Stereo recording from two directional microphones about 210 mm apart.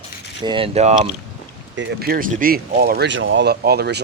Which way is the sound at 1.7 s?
55° right (ahead or behind).